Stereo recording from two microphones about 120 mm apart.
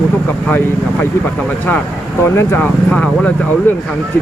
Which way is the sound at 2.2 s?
20° left (ahead or behind).